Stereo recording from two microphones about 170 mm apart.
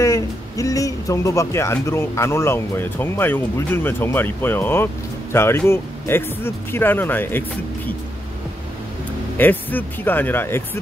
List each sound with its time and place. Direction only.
0.0 s speech: 20° left (ahead or behind)
9.4 s speech: 10° left (ahead or behind)